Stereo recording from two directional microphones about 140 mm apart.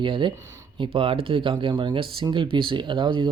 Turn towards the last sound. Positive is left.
turn(degrees=-35)  # may be behind; listen again after turning